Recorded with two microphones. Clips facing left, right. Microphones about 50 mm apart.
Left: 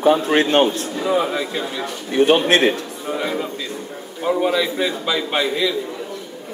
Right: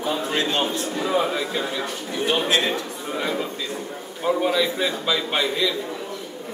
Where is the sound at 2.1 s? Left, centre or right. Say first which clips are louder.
Left 8 dB; left.